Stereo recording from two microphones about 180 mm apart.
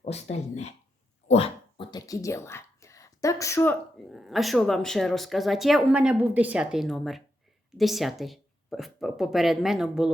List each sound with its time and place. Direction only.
0.0 s speech: 35° left (ahead or behind); by 3.8 s 15° left (ahead or behind)
4.1 s speech: centre (ahead or behind)